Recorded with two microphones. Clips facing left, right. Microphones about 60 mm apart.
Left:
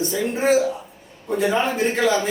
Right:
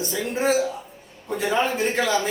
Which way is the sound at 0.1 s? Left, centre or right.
Centre.